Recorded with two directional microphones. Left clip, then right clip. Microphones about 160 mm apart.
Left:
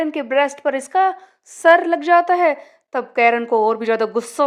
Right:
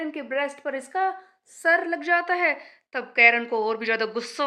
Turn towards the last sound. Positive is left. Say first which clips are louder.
# left 8 dB
turn(degrees=45)  # may be behind; listen again after turning